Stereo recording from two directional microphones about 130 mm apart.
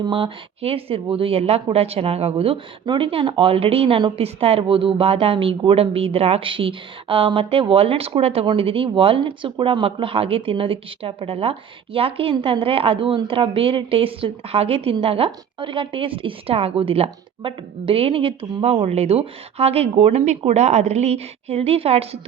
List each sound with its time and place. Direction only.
0.0 s speech: 40° right (ahead or behind)